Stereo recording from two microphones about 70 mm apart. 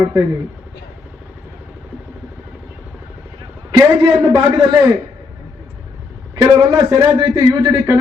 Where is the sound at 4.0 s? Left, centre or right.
Right.